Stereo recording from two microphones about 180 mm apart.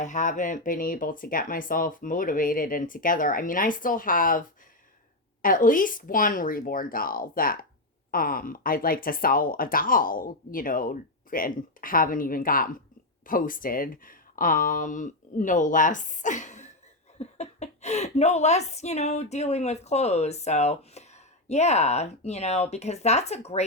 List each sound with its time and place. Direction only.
0.0 s a woman's voice: 45° left (ahead or behind)